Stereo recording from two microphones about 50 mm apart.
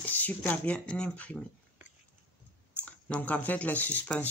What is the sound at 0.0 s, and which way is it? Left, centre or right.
Speech, left.